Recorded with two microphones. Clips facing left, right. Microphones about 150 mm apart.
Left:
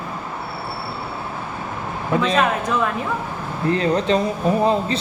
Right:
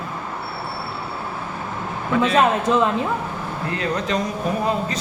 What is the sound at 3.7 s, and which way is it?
Speech, 30° left (ahead or behind).